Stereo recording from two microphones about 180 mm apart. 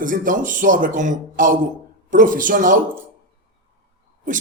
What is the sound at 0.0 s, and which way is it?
A man's voice, 45° right (ahead or behind).